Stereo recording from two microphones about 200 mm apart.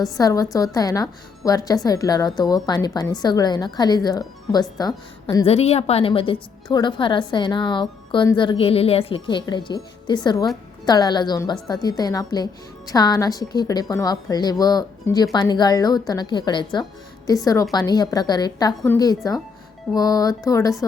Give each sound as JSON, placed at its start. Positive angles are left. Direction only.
{"t": 0.2, "sound": "a woman's voice", "side_deg": 15}
{"t": 5.5, "sound": "a woman's voice", "side_deg": 30}